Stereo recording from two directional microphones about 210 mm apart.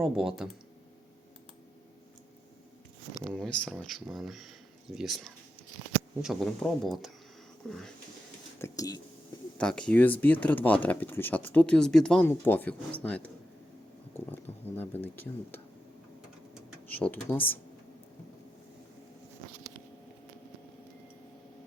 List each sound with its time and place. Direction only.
0.0 s speech: centre (ahead or behind)
3.3 s speech: centre (ahead or behind)
8.6 s speech: 15° left (ahead or behind)
9.6 s speech: 5° left (ahead or behind)
16.9 s speech: 10° left (ahead or behind)